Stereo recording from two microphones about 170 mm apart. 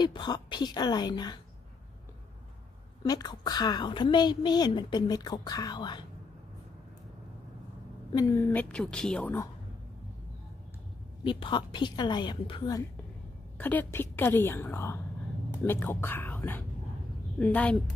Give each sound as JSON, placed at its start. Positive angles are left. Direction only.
{"t": 0.0, "sound": "a woman's voice", "side_deg": 25}
{"t": 3.0, "sound": "a woman's voice", "side_deg": 25}
{"t": 8.1, "sound": "a woman's voice", "side_deg": 20}
{"t": 11.2, "sound": "a woman's voice", "side_deg": 30}
{"t": 13.6, "sound": "a woman's voice", "side_deg": 10}